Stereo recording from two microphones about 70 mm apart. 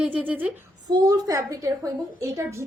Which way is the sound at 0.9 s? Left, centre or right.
Right.